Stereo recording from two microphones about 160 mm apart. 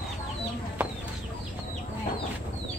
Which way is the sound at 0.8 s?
10° right (ahead or behind).